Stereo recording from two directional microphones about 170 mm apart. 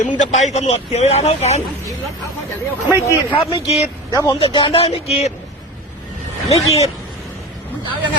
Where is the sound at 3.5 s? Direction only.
35° left (ahead or behind).